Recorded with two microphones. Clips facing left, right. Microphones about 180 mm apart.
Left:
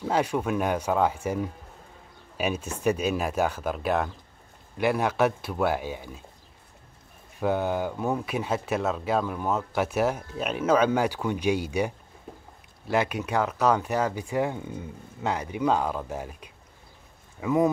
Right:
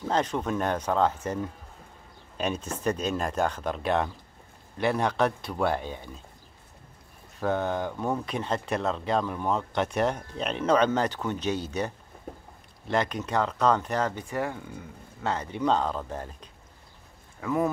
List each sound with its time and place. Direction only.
0.0 s speech: 10° left (ahead or behind)
7.3 s speech: 10° left (ahead or behind)
15.3 s speech: 10° left (ahead or behind)